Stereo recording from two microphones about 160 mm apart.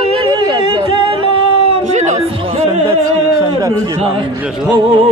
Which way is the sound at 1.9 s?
45° right (ahead or behind).